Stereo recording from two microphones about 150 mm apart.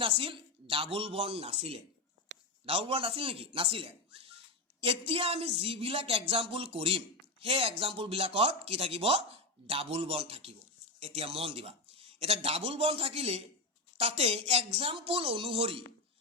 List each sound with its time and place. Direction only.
0.0 s speech: 35° right (ahead or behind)